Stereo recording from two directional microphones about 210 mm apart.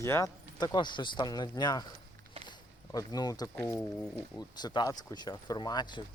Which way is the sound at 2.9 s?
15° left (ahead or behind).